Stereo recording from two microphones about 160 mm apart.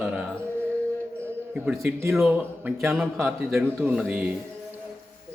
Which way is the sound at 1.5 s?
5° right (ahead or behind).